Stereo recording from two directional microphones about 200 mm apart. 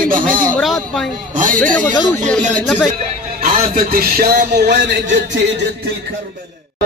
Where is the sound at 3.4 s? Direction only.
45° right (ahead or behind); by 5.4 s 60° right (ahead or behind).